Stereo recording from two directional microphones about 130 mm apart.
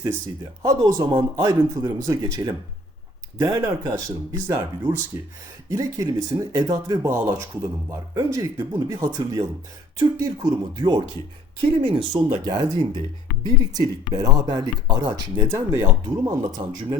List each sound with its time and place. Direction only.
0.6 s speech: 30° right (ahead or behind)
15.5 s speech: 20° right (ahead or behind)